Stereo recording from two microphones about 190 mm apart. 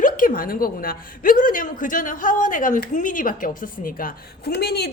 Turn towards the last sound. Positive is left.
turn(degrees=60)  # may be behind; listen again after turning